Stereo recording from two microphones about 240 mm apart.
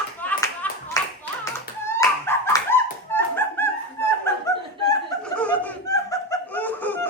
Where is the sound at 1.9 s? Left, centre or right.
Centre.